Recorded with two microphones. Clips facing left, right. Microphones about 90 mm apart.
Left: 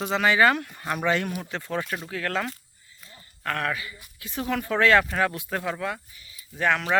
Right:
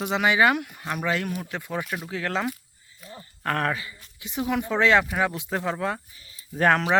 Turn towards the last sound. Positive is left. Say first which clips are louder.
# right 4 dB
turn(degrees=-40)  # may be behind; listen again after turning